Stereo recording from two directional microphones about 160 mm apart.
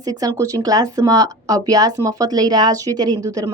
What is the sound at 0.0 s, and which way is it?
A woman's voice, 25° right (ahead or behind).